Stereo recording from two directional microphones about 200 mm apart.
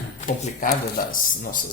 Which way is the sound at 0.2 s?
40° left (ahead or behind).